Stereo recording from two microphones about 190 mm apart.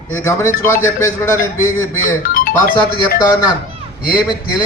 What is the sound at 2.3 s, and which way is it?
Music, 50° left (ahead or behind).